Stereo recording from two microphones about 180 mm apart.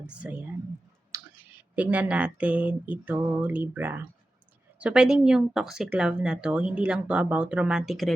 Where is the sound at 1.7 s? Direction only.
10° right (ahead or behind).